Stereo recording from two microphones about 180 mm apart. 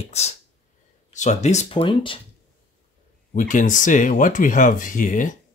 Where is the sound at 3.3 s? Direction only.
45° left (ahead or behind).